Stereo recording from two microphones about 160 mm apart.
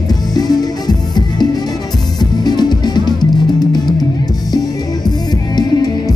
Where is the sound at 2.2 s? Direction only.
25° left (ahead or behind).